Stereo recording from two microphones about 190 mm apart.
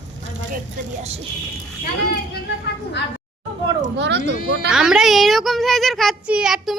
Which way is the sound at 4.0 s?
65° right (ahead or behind).